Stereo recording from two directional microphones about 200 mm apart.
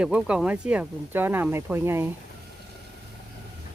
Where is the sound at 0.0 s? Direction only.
5° right (ahead or behind).